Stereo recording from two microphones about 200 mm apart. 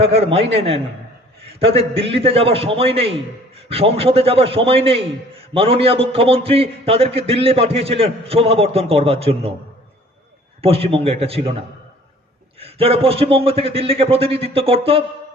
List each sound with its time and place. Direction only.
0.0 s a man's voice: 30° right (ahead or behind)
10.6 s a man's voice: 30° right (ahead or behind)
12.5 s a man's voice: 30° right (ahead or behind)